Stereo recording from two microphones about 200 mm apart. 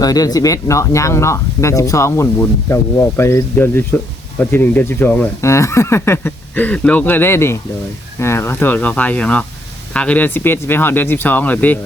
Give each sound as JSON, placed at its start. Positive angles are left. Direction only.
{"t": 0.0, "sound": "speech", "side_deg": 20}